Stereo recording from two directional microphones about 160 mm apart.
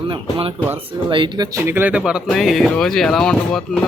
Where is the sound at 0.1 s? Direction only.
35° right (ahead or behind).